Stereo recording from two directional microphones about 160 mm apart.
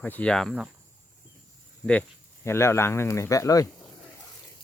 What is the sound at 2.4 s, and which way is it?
Speech, 15° left (ahead or behind).